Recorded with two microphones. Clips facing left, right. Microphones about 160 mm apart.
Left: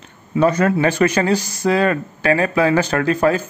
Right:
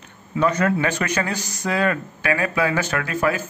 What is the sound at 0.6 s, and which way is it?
Speech, 30° left (ahead or behind).